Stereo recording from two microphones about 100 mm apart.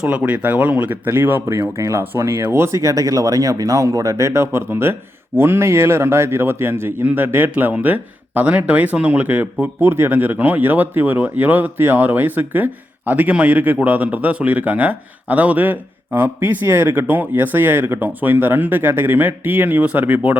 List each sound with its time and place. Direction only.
0.0 s speech: 15° right (ahead or behind)